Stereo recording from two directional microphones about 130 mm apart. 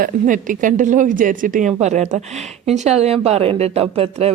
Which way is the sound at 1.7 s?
60° right (ahead or behind).